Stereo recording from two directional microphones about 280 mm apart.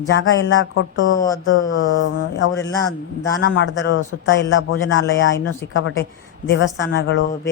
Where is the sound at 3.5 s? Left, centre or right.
Left.